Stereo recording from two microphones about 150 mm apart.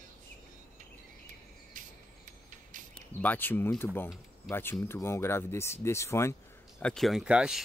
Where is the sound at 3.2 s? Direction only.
10° left (ahead or behind).